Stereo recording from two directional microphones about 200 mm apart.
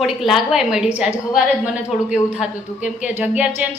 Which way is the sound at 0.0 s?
Centre (ahead or behind).